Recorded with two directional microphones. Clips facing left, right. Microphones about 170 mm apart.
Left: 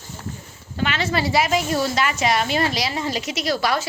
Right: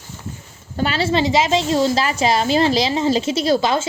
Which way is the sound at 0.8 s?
30° right (ahead or behind).